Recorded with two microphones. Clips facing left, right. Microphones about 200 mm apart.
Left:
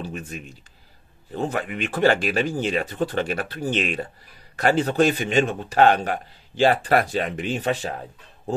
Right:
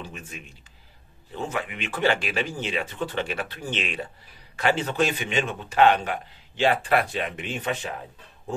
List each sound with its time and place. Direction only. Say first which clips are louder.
0.0 s speech: left 7 dB; 40° left (ahead or behind)
1.5 s speech: left 4 dB; 50° left (ahead or behind)